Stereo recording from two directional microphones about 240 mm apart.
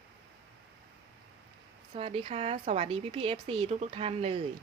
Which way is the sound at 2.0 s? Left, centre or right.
Right.